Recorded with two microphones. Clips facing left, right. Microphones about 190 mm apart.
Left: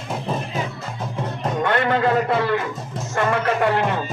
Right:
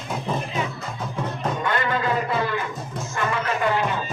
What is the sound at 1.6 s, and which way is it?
Speech, 65° left (ahead or behind).